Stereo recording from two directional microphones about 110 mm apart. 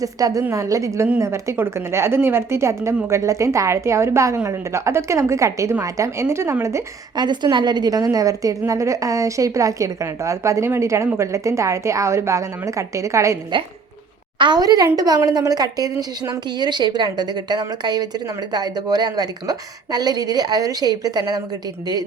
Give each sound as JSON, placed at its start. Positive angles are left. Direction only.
{"t": 0.0, "sound": "a woman's voice", "side_deg": -30}
{"t": 7.2, "sound": "a woman's voice", "side_deg": -40}
{"t": 14.3, "sound": "a woman's voice", "side_deg": -40}